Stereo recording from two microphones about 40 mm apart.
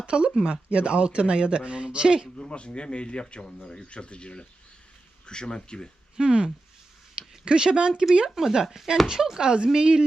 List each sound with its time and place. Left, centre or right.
0.0 s speech: right
2.3 s speech: left
6.1 s speech: centre
8.4 s speech: centre